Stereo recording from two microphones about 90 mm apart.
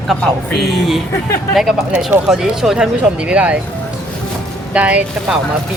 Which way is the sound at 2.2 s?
5° right (ahead or behind).